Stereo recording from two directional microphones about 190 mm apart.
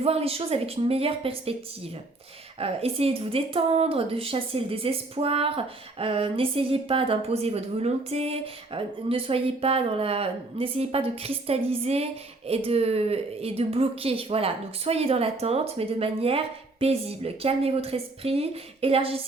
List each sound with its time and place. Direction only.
0.0 s a woman's voice: 30° right (ahead or behind)
2.6 s a woman's voice: 30° right (ahead or behind)